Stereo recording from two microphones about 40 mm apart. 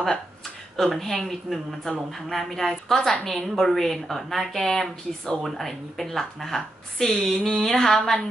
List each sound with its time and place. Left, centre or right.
0.7 s a woman's voice: centre
2.9 s a woman's voice: centre
3.3 s a woman's voice: centre